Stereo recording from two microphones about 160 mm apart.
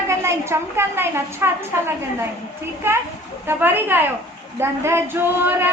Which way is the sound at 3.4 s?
15° right (ahead or behind).